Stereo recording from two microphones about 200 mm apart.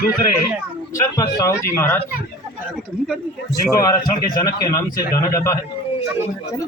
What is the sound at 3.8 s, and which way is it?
Speech, 20° left (ahead or behind).